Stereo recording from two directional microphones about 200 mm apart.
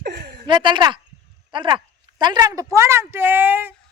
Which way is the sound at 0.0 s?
50° right (ahead or behind).